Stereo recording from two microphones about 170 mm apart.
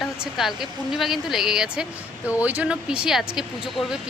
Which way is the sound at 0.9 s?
Centre (ahead or behind).